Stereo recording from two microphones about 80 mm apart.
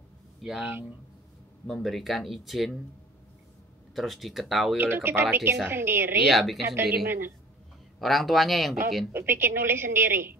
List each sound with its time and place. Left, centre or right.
0.4 s speech: centre
1.7 s speech: centre
3.9 s speech: centre
4.7 s a woman's voice: right
6.2 s speech: centre
6.8 s a woman's voice: right
8.0 s speech: centre
9.1 s a woman's voice: right